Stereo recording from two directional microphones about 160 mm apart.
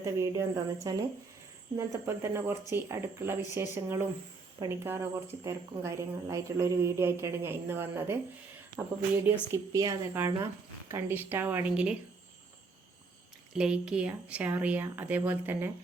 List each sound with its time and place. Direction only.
0.0 s a woman's voice: 20° right (ahead or behind)
13.5 s a woman's voice: 5° right (ahead or behind)